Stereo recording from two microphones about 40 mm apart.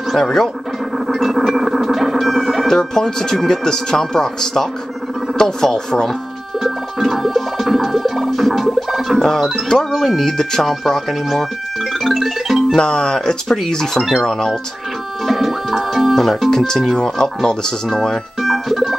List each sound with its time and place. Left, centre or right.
0.1 s speech: centre
0.9 s effects unit: centre
2.7 s speech: centre
6.6 s music: centre
9.2 s speech: centre
12.0 s music: centre
12.7 s speech: centre
15.2 s music: centre
16.4 s speech: centre
18.4 s music: centre